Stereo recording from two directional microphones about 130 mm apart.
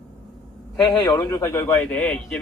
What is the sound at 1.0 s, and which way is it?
Speech, 30° left (ahead or behind).